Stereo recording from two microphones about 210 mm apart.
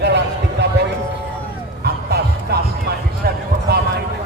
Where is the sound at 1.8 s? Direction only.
50° right (ahead or behind).